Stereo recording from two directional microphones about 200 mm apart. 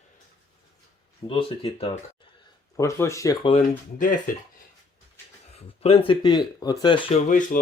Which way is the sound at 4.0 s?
40° left (ahead or behind).